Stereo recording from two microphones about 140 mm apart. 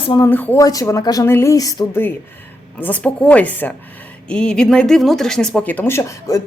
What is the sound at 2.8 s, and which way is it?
Speech, 10° left (ahead or behind).